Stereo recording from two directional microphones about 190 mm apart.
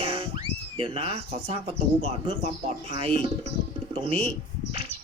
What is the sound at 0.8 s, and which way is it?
Speech, 30° right (ahead or behind).